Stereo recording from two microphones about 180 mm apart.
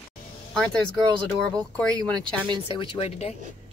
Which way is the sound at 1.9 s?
20° right (ahead or behind).